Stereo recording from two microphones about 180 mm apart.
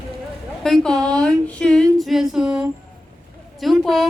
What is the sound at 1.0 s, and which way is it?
Speech, 20° right (ahead or behind).